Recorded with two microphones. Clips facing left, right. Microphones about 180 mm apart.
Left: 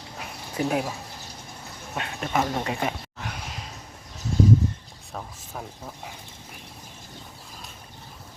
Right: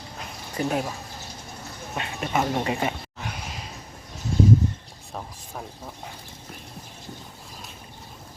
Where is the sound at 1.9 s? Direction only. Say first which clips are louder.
Even; centre (ahead or behind).